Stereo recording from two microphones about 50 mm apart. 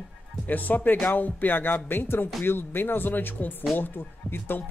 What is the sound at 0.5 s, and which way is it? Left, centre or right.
Speech, left.